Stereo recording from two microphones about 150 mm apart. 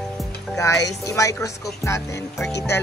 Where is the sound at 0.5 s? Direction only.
20° left (ahead or behind).